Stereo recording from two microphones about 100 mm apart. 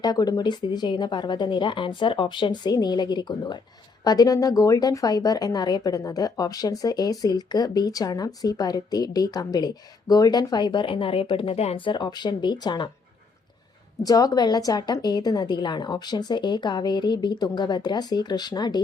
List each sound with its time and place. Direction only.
0.0 s a woman's voice: 40° left (ahead or behind); by 11.8 s 80° left
11.9 s a woman's voice: 50° left (ahead or behind)
14.0 s a woman's voice: 40° left (ahead or behind)